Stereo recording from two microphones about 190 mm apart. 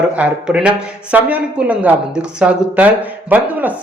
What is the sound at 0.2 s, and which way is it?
Speech, 5° right (ahead or behind).